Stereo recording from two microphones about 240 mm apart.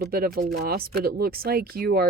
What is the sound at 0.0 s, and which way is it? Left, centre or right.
Speech, right.